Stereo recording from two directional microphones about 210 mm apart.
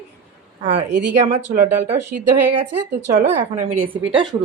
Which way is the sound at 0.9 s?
35° right (ahead or behind).